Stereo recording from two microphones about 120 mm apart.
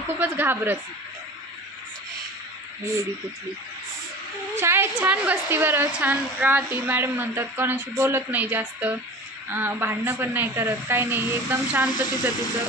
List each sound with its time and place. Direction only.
0.2 s a woman's voice: 15° right (ahead or behind)
2.8 s speech: 25° right (ahead or behind)
4.6 s a woman's voice: 20° right (ahead or behind)